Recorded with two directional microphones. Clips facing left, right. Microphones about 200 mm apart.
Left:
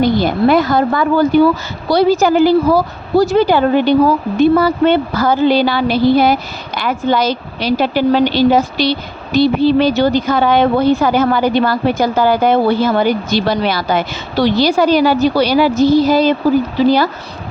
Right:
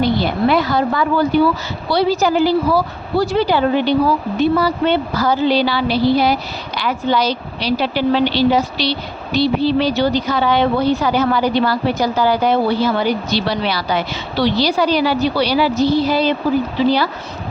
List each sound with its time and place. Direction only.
0.0 s a woman's voice: 45° left (ahead or behind)